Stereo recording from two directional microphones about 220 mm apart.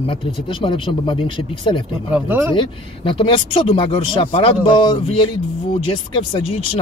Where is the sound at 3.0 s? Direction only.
25° left (ahead or behind).